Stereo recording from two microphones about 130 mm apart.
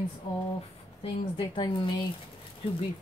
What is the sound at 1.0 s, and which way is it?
Speech, 40° left (ahead or behind).